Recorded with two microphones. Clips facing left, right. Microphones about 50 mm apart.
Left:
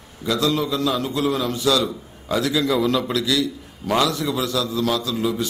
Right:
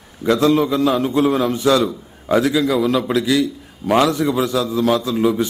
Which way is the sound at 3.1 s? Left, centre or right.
Right.